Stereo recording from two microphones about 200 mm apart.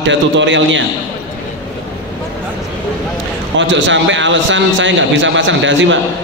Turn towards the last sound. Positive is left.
turn(degrees=-65)  # may be behind; listen again after turning